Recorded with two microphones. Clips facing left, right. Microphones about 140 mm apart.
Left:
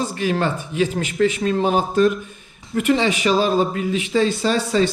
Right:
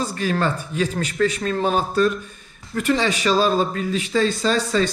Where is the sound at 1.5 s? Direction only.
15° left (ahead or behind).